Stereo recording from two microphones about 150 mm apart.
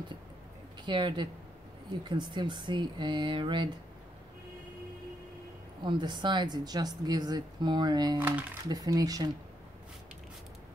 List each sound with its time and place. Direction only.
0.8 s speech: 30° right (ahead or behind)
5.9 s speech: 30° right (ahead or behind)
8.2 s speech: 10° right (ahead or behind)
8.6 s speech: 25° right (ahead or behind)